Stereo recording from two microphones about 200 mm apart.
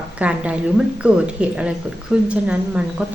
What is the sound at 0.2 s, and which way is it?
A woman's voice, 5° right (ahead or behind).